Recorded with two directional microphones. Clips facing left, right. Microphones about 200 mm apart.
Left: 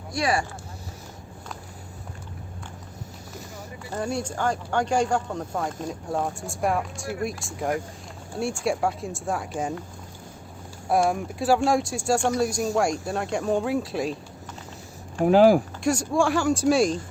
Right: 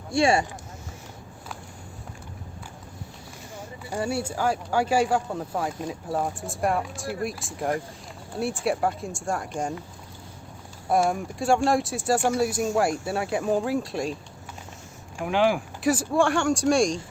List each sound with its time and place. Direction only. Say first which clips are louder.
0.1 s speech: right 4 dB; 25° right (ahead or behind)
3.9 s speech: right 1 dB; 5° right (ahead or behind)
10.8 s speech: left 1 dB; centre (ahead or behind)
15.2 s speech: left 7 dB; 40° left (ahead or behind)
15.8 s speech: even; 5° right (ahead or behind)